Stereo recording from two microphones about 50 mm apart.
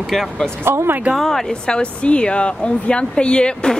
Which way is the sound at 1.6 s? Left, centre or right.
Centre.